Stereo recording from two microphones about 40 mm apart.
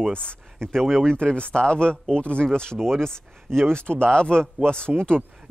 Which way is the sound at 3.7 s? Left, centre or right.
Left.